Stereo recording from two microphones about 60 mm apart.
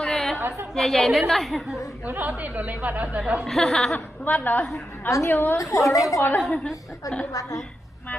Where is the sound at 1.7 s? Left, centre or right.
Left.